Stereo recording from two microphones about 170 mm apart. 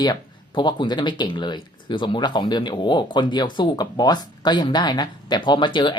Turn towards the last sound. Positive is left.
turn(degrees=30)  # may be behind; listen again after turning